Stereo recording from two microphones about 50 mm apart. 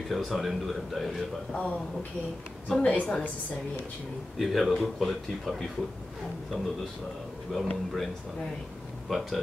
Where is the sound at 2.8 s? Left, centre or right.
Left.